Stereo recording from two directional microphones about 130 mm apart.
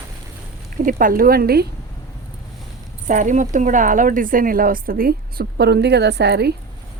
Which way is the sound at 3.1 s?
75° right (ahead or behind).